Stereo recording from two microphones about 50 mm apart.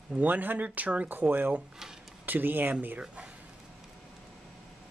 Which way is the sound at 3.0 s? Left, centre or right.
Right.